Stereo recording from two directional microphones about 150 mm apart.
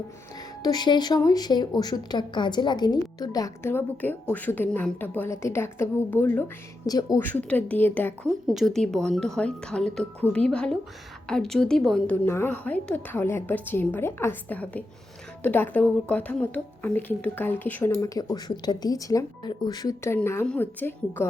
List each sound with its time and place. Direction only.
0.6 s a woman's voice: 30° left (ahead or behind)
6.8 s a woman's voice: 25° left (ahead or behind)
7.2 s a woman's voice: 10° left (ahead or behind)
8.4 s a woman's voice: centre (ahead or behind)
17.9 s a woman's voice: 25° left (ahead or behind)
20.1 s a woman's voice: 15° left (ahead or behind)